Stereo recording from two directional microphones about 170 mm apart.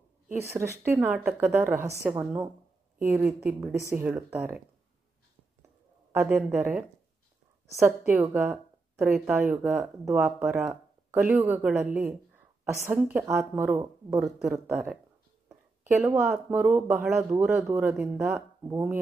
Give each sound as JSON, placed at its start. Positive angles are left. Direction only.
{"t": 0.3, "sound": "speech", "side_deg": -15}
{"t": 0.9, "sound": "speech", "side_deg": 0}
{"t": 3.8, "sound": "speech", "side_deg": -10}
{"t": 6.2, "sound": "speech", "side_deg": -10}
{"t": 7.8, "sound": "a woman's voice", "side_deg": -10}